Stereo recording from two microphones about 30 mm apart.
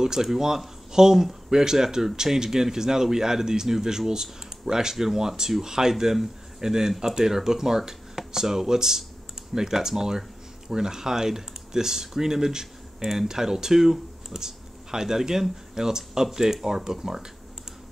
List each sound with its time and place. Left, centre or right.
0.0 s speech: centre